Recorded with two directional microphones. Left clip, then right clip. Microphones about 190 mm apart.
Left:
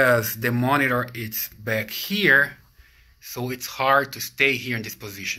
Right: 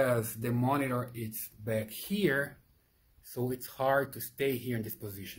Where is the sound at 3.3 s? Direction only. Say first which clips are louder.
Left 7 dB; 30° right (ahead or behind).